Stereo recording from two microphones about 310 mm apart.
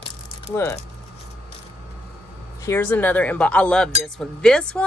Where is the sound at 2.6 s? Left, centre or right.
Centre.